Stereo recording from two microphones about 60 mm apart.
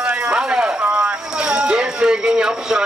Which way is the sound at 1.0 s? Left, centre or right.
Centre.